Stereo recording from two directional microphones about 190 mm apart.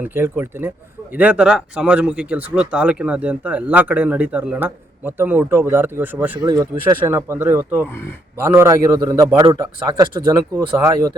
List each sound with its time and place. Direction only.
0.0 s speech: 10° right (ahead or behind)
6.4 s speech: 20° right (ahead or behind)